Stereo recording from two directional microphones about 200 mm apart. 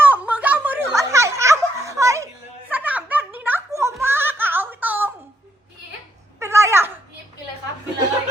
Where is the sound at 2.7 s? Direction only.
10° right (ahead or behind).